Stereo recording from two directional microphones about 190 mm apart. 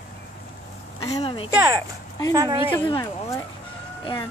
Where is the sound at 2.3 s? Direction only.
15° right (ahead or behind).